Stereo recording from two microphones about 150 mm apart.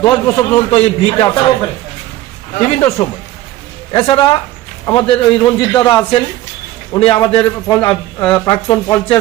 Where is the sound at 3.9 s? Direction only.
35° left (ahead or behind).